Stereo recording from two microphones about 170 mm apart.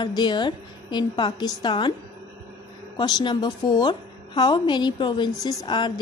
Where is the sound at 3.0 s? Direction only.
25° left (ahead or behind).